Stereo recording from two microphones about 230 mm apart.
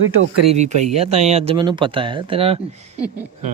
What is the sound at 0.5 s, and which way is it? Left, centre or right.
Speech, right.